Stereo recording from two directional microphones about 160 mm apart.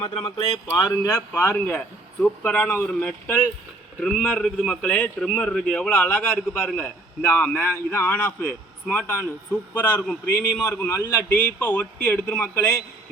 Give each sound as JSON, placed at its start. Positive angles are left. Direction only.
{"t": 0.0, "sound": "speech", "side_deg": 40}
{"t": 0.9, "sound": "a man's voice", "side_deg": 20}